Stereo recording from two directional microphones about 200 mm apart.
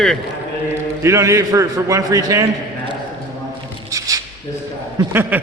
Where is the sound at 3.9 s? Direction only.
15° right (ahead or behind).